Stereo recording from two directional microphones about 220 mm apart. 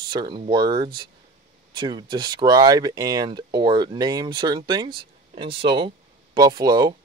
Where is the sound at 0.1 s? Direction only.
20° right (ahead or behind).